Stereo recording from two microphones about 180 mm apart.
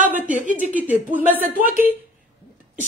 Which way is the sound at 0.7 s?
10° right (ahead or behind).